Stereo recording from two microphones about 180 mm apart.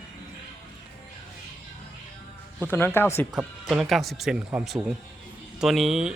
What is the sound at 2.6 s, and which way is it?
Speech, 10° left (ahead or behind).